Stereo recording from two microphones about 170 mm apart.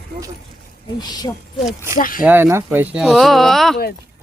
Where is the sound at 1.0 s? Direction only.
25° left (ahead or behind).